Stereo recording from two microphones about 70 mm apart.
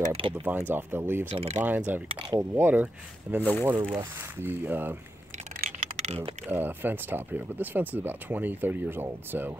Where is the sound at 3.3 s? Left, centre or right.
Centre.